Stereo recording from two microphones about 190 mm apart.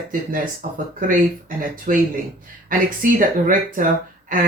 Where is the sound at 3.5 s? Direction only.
45° right (ahead or behind).